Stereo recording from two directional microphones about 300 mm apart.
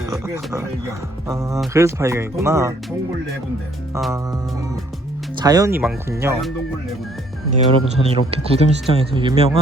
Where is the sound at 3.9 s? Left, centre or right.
Centre.